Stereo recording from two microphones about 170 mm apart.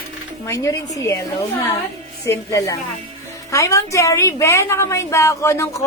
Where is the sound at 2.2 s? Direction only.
20° left (ahead or behind).